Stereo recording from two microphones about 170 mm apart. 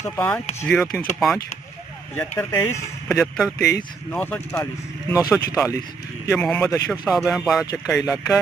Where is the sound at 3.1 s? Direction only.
Centre (ahead or behind).